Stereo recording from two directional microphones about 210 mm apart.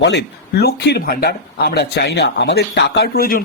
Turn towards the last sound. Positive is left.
turn(degrees=45)  # may be behind; listen again after turning